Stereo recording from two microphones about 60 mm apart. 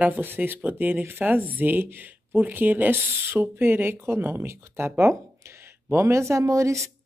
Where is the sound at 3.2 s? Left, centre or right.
Right.